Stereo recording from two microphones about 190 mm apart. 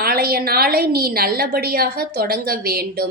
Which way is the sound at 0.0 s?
50° right (ahead or behind).